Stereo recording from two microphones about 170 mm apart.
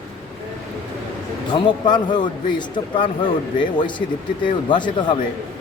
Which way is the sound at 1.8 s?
25° left (ahead or behind).